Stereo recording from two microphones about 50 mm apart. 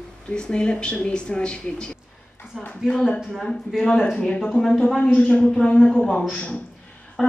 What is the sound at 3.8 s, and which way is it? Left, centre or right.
Speech, centre.